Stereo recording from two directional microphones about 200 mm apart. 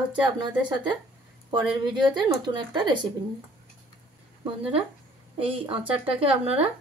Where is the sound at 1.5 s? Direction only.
25° right (ahead or behind).